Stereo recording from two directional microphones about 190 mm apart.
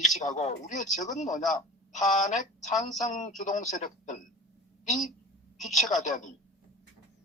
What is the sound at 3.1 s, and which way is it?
Speech, 40° left (ahead or behind).